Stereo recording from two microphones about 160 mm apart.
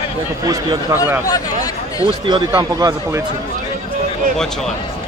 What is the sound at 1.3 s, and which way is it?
Speech, 25° left (ahead or behind).